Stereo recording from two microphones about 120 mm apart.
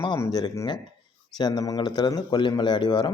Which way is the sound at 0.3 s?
35° left (ahead or behind).